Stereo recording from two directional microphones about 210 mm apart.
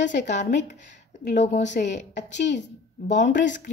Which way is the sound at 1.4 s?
35° left (ahead or behind).